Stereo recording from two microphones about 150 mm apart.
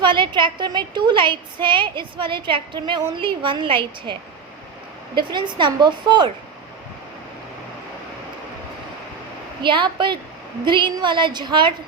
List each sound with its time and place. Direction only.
0.0 s a woman's voice: 30° right (ahead or behind)
9.6 s a woman's voice: 35° right (ahead or behind)